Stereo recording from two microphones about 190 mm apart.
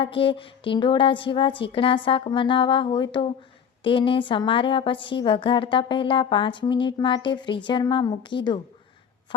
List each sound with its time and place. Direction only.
0.0 s a woman's voice: 30° left (ahead or behind)